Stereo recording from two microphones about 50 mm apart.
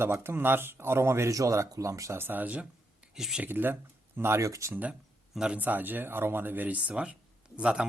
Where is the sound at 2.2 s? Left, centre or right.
Right.